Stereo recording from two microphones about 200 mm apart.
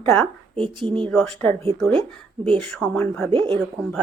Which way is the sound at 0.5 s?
25° right (ahead or behind).